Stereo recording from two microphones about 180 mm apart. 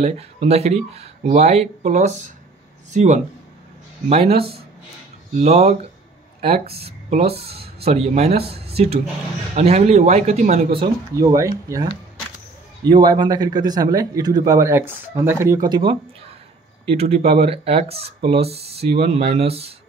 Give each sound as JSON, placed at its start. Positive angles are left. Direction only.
{"t": 0.0, "sound": "speech", "side_deg": -35}
{"t": 10.7, "sound": "speech", "side_deg": -25}